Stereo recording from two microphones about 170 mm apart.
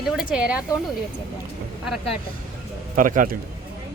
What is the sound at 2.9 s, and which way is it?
Speech, 50° right (ahead or behind).